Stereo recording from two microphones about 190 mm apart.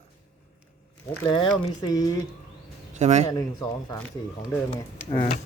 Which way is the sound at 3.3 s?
20° left (ahead or behind).